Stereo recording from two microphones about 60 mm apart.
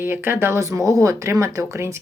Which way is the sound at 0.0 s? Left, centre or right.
Right.